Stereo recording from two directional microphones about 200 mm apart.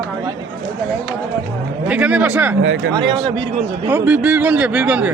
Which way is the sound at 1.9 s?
5° right (ahead or behind).